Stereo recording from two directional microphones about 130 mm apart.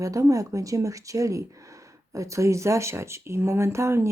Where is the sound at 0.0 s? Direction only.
25° right (ahead or behind).